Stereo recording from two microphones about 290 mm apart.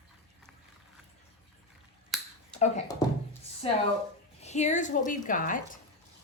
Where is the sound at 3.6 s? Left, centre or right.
Centre.